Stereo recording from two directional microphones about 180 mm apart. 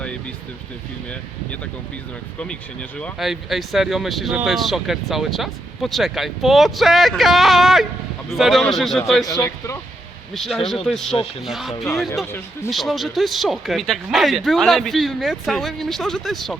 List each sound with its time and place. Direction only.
3.0 s speech: centre (ahead or behind)
9.2 s speech: 20° left (ahead or behind)
10.3 s speech: centre (ahead or behind)